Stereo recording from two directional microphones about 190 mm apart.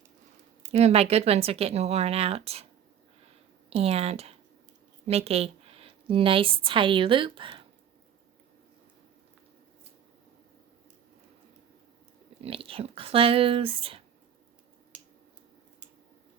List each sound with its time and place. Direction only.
0.7 s speech: 35° right (ahead or behind)
3.7 s a woman's voice: 30° right (ahead or behind)
12.4 s speech: 30° right (ahead or behind)